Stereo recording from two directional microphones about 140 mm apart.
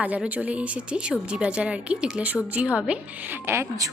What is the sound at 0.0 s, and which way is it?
A woman's voice, 10° right (ahead or behind).